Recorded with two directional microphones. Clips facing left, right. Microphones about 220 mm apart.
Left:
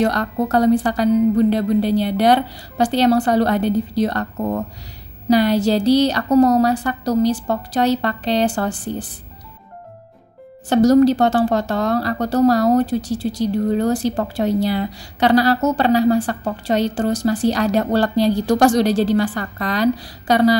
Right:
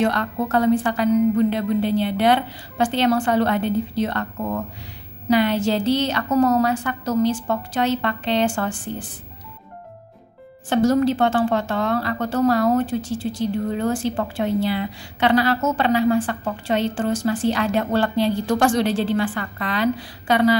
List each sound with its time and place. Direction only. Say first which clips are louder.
0.0 s a woman's voice: left 3 dB; 40° left (ahead or behind)
10.7 s a woman's voice: left 5 dB; 40° left (ahead or behind)